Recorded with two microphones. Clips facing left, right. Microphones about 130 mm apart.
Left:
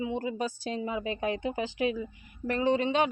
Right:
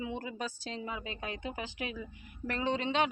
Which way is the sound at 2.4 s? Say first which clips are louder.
Left 6 dB; 10° left (ahead or behind).